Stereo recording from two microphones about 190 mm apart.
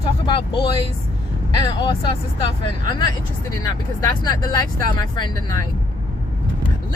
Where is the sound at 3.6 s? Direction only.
20° left (ahead or behind).